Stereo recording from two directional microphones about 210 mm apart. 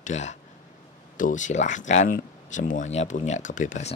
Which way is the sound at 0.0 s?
35° left (ahead or behind).